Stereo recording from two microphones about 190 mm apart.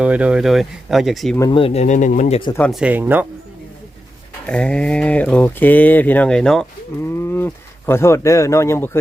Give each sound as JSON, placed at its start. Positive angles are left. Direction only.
{"t": 0.0, "sound": "speech", "side_deg": -5}
{"t": 1.4, "sound": "speech", "side_deg": 25}
{"t": 2.6, "sound": "speech", "side_deg": 5}
{"t": 2.8, "sound": "speech", "side_deg": -10}
{"t": 4.4, "sound": "speech", "side_deg": 5}